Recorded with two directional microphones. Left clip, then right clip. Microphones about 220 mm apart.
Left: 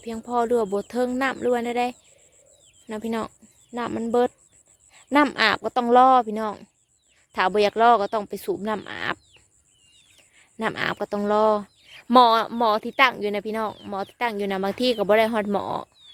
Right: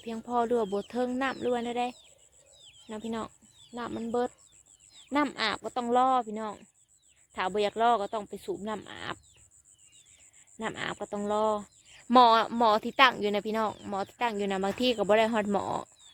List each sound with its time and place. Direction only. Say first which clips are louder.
0.0 s speech: left 5 dB; 15° left (ahead or behind); by 9.1 s 30° left (ahead or behind)
10.6 s speech: left 9 dB; 30° left (ahead or behind)
12.0 s speech: left 4 dB; 15° left (ahead or behind)